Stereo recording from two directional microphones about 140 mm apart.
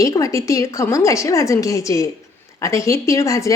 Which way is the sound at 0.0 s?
25° left (ahead or behind).